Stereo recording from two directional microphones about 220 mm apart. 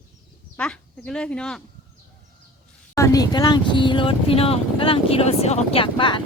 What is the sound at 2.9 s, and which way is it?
Speech, 15° left (ahead or behind).